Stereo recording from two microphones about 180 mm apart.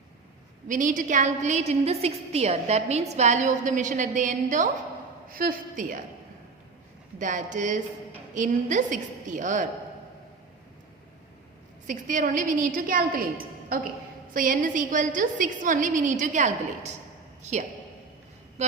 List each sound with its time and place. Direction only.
0.7 s a woman's voice: 45° right (ahead or behind)
7.2 s a woman's voice: 45° right (ahead or behind)
11.9 s a woman's voice: 45° right (ahead or behind)